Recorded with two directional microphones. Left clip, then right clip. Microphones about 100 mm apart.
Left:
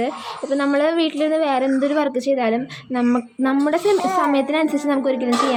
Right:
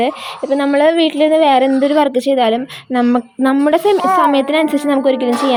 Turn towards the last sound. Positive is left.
turn(degrees=-35)  # may be behind; listen again after turning